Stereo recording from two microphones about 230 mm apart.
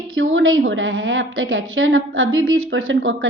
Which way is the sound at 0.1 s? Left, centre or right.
Right.